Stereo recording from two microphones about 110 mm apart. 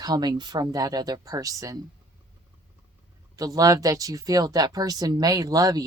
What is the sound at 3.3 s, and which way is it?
Speech, 35° right (ahead or behind).